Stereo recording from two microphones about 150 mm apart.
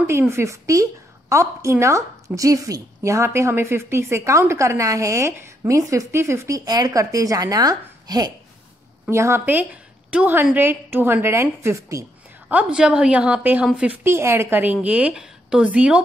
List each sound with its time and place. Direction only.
0.0 s a woman's voice: 15° right (ahead or behind)
12.4 s speech: 10° right (ahead or behind)